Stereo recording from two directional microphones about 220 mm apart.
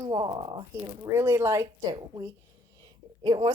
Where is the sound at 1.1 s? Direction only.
10° right (ahead or behind).